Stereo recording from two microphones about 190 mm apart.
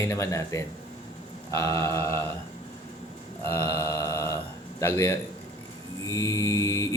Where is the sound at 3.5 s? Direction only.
15° left (ahead or behind).